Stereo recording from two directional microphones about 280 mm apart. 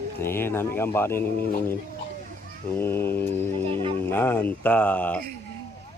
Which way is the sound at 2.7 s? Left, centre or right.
Centre.